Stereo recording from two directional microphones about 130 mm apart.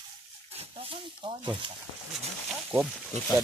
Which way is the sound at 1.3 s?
40° right (ahead or behind).